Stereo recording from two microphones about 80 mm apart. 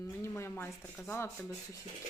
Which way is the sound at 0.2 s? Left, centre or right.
Left.